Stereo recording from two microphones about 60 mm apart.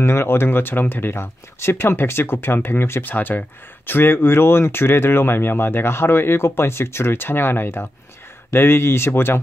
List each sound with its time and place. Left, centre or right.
0.0 s speech: left